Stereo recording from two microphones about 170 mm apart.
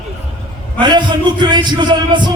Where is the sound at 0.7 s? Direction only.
25° right (ahead or behind).